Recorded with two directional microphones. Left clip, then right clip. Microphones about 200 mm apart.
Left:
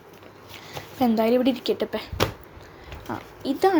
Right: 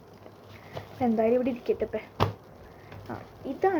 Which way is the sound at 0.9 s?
30° left (ahead or behind).